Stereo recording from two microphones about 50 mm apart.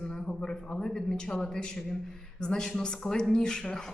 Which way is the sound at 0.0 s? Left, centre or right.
Centre.